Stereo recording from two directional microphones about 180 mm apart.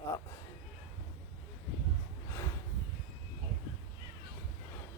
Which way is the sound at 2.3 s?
15° left (ahead or behind).